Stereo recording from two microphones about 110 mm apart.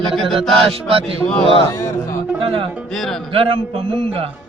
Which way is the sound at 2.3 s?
50° right (ahead or behind).